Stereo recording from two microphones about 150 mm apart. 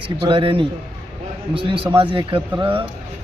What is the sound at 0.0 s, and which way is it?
A man's voice, 35° right (ahead or behind).